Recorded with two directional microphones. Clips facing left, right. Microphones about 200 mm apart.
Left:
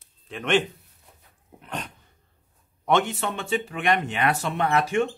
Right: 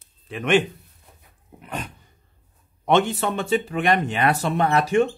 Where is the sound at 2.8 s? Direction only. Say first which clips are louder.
Right 3 dB; 25° right (ahead or behind).